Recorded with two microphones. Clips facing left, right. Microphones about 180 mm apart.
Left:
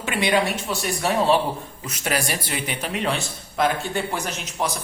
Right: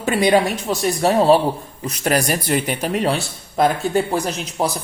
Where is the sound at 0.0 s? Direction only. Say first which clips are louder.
Right 6 dB; 40° right (ahead or behind).